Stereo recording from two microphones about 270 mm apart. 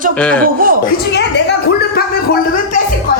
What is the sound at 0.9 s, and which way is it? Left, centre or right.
Speech, left.